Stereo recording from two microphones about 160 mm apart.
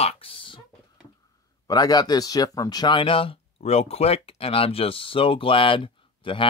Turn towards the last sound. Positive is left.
turn(degrees=30)  # may be behind; listen again after turning